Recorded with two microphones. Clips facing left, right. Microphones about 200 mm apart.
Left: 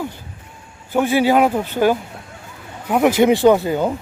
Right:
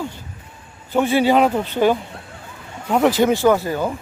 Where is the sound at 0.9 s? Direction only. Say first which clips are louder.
Left 1 dB; 10° left (ahead or behind).